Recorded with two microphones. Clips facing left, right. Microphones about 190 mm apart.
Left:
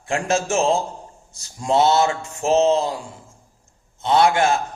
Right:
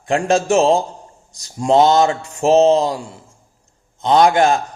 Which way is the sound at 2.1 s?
35° right (ahead or behind).